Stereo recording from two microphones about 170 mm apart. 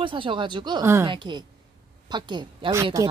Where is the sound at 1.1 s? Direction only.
25° right (ahead or behind).